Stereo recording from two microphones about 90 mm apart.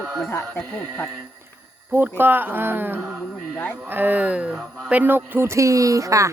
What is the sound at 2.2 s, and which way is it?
Speech, 20° right (ahead or behind).